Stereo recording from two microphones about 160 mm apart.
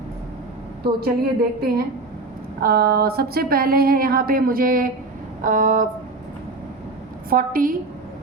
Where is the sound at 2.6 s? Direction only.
70° right (ahead or behind).